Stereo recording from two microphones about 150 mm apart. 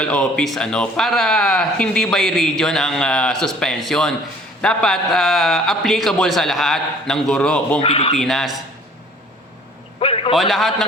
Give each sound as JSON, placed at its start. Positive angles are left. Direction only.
{"t": 0.0, "sound": "speech", "side_deg": 5}
{"t": 7.8, "sound": "speech", "side_deg": 40}
{"t": 8.2, "sound": "speech", "side_deg": 0}
{"t": 10.0, "sound": "a sound", "side_deg": 40}
{"t": 10.3, "sound": "speech", "side_deg": 0}